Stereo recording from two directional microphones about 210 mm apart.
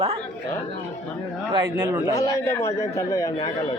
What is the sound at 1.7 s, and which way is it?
Speech, 10° right (ahead or behind).